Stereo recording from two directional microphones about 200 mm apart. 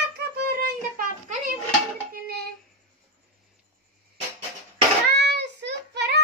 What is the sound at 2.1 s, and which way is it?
Child singing, 55° right (ahead or behind).